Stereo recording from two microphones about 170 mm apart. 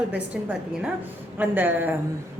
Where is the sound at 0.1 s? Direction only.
10° right (ahead or behind).